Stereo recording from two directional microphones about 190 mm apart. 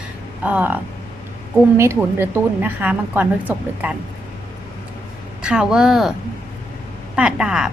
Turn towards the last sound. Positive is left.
turn(degrees=-5)  # may be behind; listen again after turning